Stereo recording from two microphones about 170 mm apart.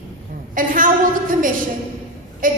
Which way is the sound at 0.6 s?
55° right (ahead or behind).